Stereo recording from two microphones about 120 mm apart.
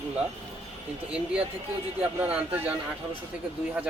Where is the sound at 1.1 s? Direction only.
10° right (ahead or behind).